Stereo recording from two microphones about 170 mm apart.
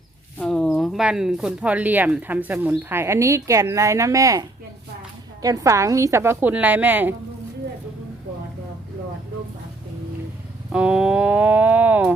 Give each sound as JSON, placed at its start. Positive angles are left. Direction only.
{"t": 0.3, "sound": "speech", "side_deg": 5}
{"t": 10.7, "sound": "speech", "side_deg": -5}